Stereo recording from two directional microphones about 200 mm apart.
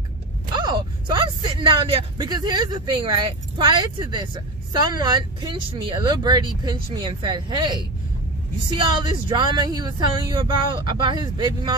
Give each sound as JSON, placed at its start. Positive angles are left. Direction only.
{"t": 1.2, "sound": "speech", "side_deg": -25}